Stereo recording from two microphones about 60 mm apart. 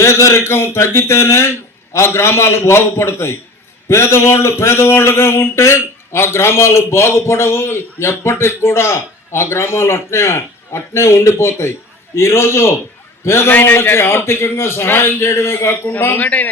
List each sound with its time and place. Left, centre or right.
0.0 s a man's voice: left
13.5 s a man's voice: left
16.2 s a man's voice: left